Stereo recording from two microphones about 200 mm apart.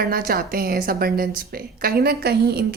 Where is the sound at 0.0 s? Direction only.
45° right (ahead or behind).